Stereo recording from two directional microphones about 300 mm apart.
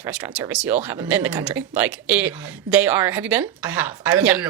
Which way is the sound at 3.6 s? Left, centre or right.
Left.